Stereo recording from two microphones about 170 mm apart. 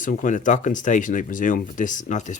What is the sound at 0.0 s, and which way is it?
Speech, 50° left (ahead or behind).